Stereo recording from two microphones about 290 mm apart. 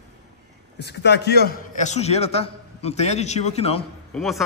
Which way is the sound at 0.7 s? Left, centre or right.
Left.